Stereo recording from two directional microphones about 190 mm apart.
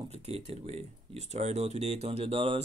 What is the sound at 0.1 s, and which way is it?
Speech, 35° right (ahead or behind).